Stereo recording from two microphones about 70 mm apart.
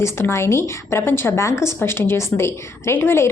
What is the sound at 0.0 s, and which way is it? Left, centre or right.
A woman's voice, left.